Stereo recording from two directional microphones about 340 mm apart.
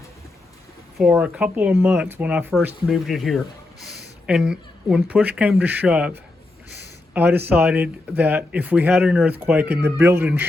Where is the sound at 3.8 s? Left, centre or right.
Right.